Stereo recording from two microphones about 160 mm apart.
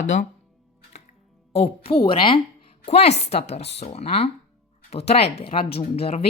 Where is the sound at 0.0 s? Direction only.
50° left (ahead or behind).